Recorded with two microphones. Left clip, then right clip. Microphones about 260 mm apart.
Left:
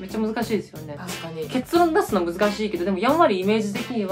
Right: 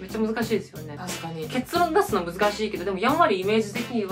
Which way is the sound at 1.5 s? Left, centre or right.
Left.